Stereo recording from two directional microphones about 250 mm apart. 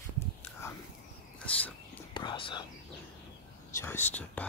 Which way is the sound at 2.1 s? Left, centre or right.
Centre.